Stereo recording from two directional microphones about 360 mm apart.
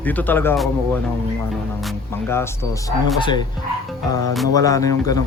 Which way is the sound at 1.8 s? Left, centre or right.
Centre.